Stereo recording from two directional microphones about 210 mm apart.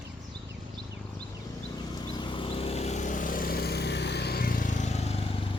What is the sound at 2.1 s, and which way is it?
Vehicle, 20° left (ahead or behind).